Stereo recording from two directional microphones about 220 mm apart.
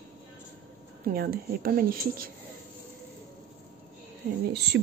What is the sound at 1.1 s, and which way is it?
Speech, 40° right (ahead or behind).